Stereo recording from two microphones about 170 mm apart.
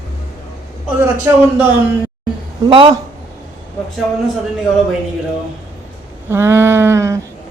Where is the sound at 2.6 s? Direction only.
30° right (ahead or behind).